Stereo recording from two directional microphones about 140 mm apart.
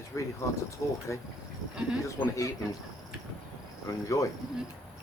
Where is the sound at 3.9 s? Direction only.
25° left (ahead or behind).